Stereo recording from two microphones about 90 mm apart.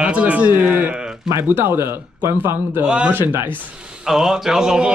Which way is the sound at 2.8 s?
10° right (ahead or behind).